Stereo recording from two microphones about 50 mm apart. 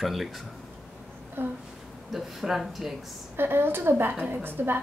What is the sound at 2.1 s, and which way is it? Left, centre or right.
Speech, centre.